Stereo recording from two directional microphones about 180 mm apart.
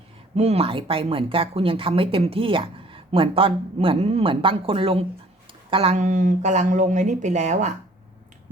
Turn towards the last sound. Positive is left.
turn(degrees=-40)  # may be behind; listen again after turning